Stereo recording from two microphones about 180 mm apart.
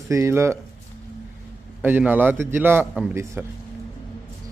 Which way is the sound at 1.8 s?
10° right (ahead or behind).